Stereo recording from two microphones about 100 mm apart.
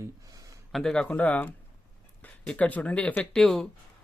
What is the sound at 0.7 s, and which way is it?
Speech, 5° left (ahead or behind).